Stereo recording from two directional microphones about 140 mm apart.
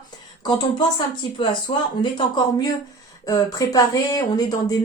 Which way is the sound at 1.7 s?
45° left (ahead or behind).